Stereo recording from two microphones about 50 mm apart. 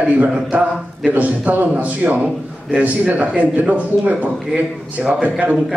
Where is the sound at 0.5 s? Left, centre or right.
Right.